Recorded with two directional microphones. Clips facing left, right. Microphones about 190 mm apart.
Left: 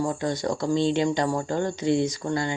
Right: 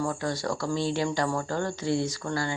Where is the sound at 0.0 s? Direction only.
20° left (ahead or behind).